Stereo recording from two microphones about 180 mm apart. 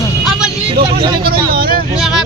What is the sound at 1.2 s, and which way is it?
Speech, 55° right (ahead or behind).